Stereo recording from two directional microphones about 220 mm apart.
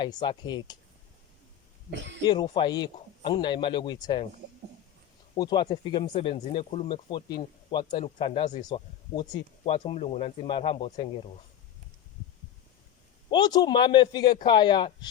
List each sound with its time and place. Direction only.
0.0 s speech: 20° left (ahead or behind)
1.9 s speech: 55° right (ahead or behind)
2.2 s speech: 20° left (ahead or behind)
5.4 s speech: 20° left (ahead or behind)
7.9 s speech: 30° left (ahead or behind)
13.3 s speech: 20° left (ahead or behind)